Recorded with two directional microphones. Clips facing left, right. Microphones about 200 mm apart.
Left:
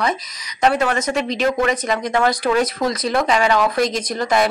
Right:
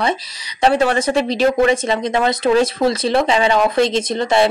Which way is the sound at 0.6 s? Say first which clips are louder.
Right 3 dB; 30° right (ahead or behind).